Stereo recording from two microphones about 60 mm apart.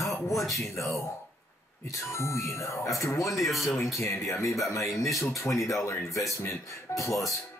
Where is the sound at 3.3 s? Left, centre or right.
Centre.